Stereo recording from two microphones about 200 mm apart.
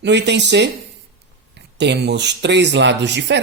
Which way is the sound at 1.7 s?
60° right (ahead or behind).